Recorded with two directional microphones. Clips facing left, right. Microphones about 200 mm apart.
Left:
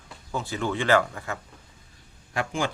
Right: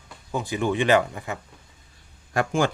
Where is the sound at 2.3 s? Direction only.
45° right (ahead or behind).